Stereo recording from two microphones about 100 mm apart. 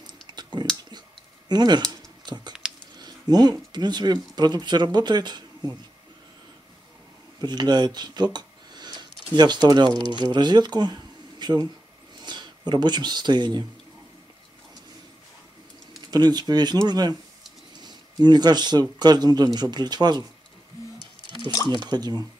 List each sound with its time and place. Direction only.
0.0 s typing: 45° right (ahead or behind)
1.5 s a sound: 45° right (ahead or behind)
3.7 s speech: 45° right (ahead or behind)
7.4 s speech: 45° right (ahead or behind)
16.1 s speech: 45° right (ahead or behind)
21.3 s a sound: 60° left (ahead or behind)
21.6 s speech: 45° right (ahead or behind)